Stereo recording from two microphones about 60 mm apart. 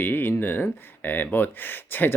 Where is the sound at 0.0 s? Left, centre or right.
Left.